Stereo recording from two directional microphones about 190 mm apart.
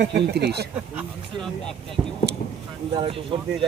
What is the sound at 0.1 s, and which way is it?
Speech, 60° right (ahead or behind).